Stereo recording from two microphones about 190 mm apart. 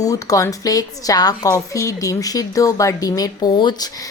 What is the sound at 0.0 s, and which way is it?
A woman's voice, 20° left (ahead or behind).